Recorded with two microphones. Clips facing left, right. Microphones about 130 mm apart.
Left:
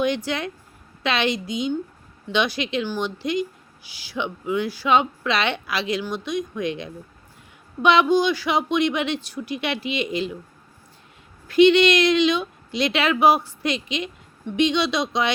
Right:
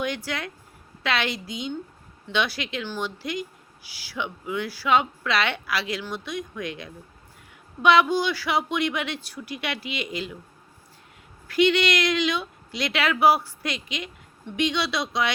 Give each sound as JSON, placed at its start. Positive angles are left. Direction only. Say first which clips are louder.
{"t": 0.0, "sound": "speech", "louder": "left 6 dB", "side_deg": 20}
{"t": 11.4, "sound": "speech", "louder": "left 6 dB", "side_deg": 25}